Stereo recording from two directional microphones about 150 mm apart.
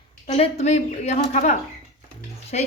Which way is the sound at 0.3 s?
40° left (ahead or behind).